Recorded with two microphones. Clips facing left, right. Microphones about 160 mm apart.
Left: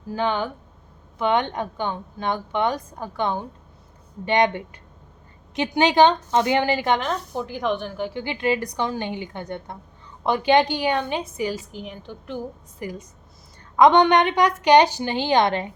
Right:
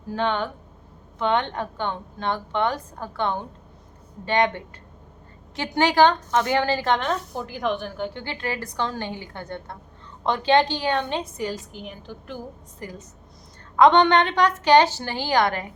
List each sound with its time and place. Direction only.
0.1 s a woman's voice: 10° left (ahead or behind)
5.7 s a woman's voice: 20° left (ahead or behind)
7.0 s a woman's voice: centre (ahead or behind)
12.8 s a woman's voice: 10° left (ahead or behind)